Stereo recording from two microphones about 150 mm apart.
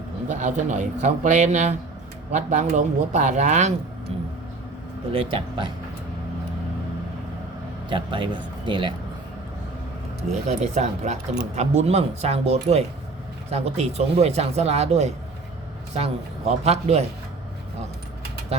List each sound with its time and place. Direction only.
0.3 s speech: 55° right (ahead or behind)
5.1 s a man's voice: 35° right (ahead or behind)
7.9 s a man's voice: 35° right (ahead or behind)
10.6 s speech: 50° right (ahead or behind)